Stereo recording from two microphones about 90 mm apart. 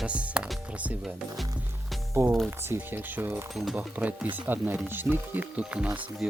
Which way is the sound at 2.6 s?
25° right (ahead or behind).